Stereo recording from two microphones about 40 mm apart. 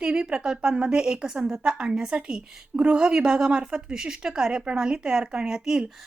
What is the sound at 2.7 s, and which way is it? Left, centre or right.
A woman's voice, right.